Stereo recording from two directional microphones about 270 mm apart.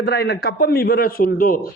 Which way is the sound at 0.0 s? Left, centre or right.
Left.